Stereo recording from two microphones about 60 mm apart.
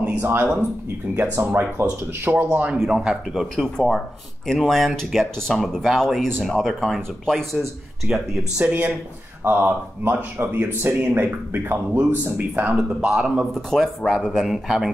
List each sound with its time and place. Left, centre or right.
0.2 s speech: right
2.5 s a man's voice: right
3.3 s speech: centre
8.1 s speech: centre
9.4 s speech: right
12.6 s a man's voice: centre
13.7 s speech: centre